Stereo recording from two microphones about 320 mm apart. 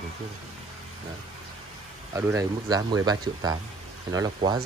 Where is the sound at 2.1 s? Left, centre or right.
Centre.